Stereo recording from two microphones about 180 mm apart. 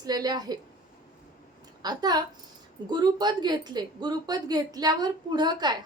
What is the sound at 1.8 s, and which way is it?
A woman's voice, 25° right (ahead or behind).